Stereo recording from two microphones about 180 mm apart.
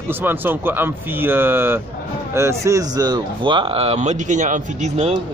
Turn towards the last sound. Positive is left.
turn(degrees=-35)  # may be behind; listen again after turning